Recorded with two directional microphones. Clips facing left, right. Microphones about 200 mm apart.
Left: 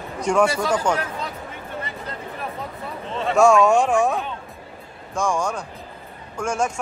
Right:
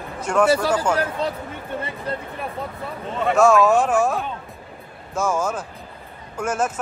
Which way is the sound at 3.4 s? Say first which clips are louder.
Left 1 dB; centre (ahead or behind).